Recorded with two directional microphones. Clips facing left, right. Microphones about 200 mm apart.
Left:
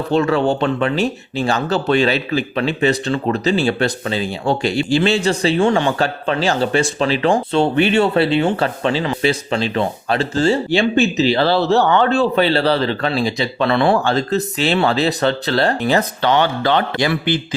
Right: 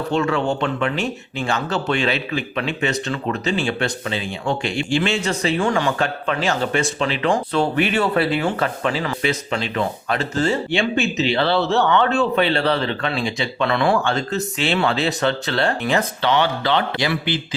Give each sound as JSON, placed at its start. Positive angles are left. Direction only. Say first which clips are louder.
{"t": 0.1, "sound": "speech", "louder": "left 5 dB", "side_deg": 35}